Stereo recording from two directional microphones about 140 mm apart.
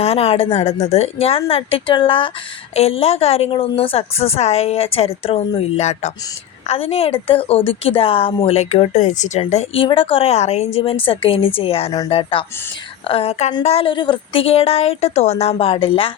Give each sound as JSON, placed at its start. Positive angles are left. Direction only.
{"t": 0.0, "sound": "speech", "side_deg": 45}